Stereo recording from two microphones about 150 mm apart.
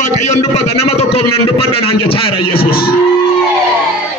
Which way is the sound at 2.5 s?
90° left.